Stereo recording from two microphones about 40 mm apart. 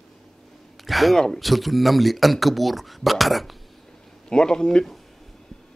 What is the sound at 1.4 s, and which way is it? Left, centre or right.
Speech, centre.